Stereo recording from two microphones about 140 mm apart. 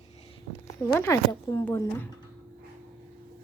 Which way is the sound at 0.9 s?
20° left (ahead or behind).